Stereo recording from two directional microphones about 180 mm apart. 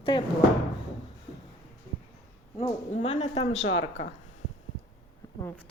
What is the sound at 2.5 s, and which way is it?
Speech, 35° left (ahead or behind).